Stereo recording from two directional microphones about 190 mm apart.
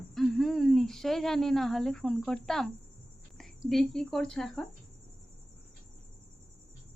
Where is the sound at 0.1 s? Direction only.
Centre (ahead or behind).